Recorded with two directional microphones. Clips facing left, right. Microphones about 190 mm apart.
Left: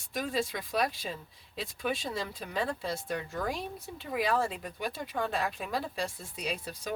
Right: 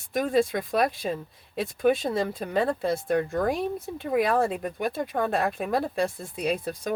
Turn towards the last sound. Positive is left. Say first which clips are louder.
# right 9 dB
turn(degrees=-55)  # may be behind; listen again after turning